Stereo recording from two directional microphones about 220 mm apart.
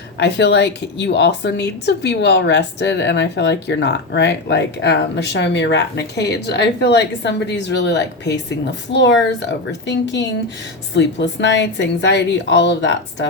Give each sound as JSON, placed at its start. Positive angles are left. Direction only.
{"t": 0.2, "sound": "a woman's voice", "side_deg": 50}